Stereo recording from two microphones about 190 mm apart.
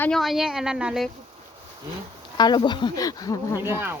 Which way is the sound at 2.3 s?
25° left (ahead or behind).